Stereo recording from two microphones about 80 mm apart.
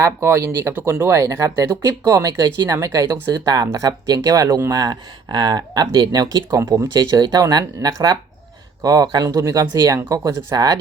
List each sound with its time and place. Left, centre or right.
0.0 s speech: right
4.7 s speech: right
6.6 s speech: right
6.9 s speech: right